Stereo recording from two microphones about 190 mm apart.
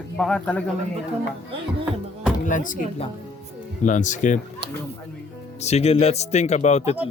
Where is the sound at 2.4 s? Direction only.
45° left (ahead or behind).